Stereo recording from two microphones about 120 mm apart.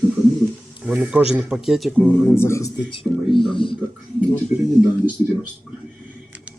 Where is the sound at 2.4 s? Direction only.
25° left (ahead or behind).